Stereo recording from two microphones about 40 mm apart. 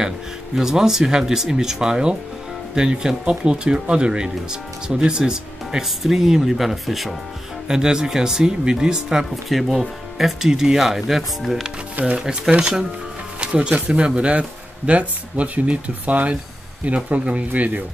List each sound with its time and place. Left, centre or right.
0.6 s speech: centre
7.6 s speech: centre
9.5 s speech: centre
12.0 s speech: right
12.5 s speech: centre
17.5 s speech: right